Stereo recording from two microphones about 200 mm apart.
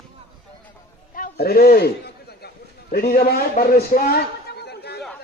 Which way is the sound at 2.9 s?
50° left (ahead or behind).